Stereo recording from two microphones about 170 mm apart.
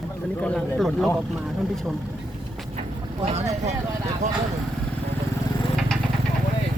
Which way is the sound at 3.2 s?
40° right (ahead or behind).